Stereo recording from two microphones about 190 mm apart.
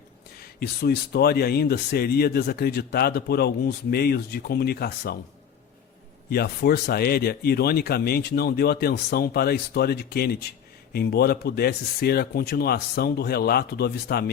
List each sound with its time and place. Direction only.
0.6 s speech: 55° left (ahead or behind)
6.3 s speech: 55° left (ahead or behind)